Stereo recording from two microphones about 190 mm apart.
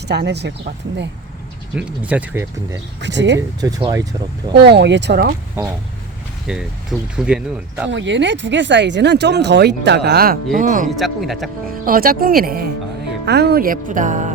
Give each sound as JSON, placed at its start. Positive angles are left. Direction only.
{"t": 0.1, "sound": "speech", "side_deg": -60}
{"t": 1.7, "sound": "speech", "side_deg": -5}
{"t": 3.0, "sound": "speech", "side_deg": -70}
{"t": 3.6, "sound": "speech", "side_deg": -20}
{"t": 4.5, "sound": "speech", "side_deg": -60}
{"t": 5.6, "sound": "speech", "side_deg": -15}
{"t": 7.9, "sound": "speech", "side_deg": -70}
{"t": 10.8, "sound": "speech", "side_deg": 0}
{"t": 11.9, "sound": "speech", "side_deg": -50}